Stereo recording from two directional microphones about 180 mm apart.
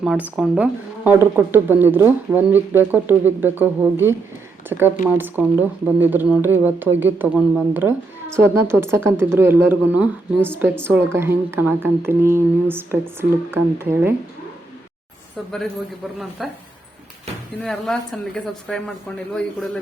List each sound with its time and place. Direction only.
0.0 s a woman's voice: 5° right (ahead or behind)
16.4 s speech: centre (ahead or behind)
17.6 s speech: centre (ahead or behind)